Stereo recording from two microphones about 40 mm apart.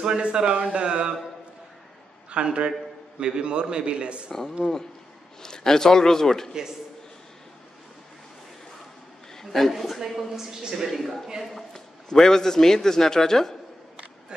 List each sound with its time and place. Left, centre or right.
0.0 s a man's voice: right
2.3 s a man's voice: right
4.3 s a man's voice: centre
9.4 s a woman's voice: centre
10.9 s a woman's voice: centre